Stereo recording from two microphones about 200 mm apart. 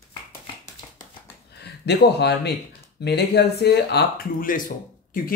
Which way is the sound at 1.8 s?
55° left (ahead or behind).